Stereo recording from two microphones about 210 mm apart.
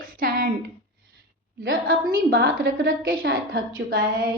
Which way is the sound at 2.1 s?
45° right (ahead or behind).